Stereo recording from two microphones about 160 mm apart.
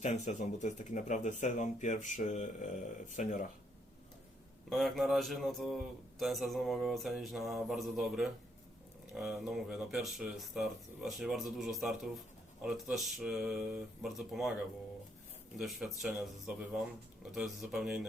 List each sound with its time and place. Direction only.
0.0 s speech: 45° left (ahead or behind)
4.7 s a man's voice: centre (ahead or behind)
15.5 s a man's voice: centre (ahead or behind)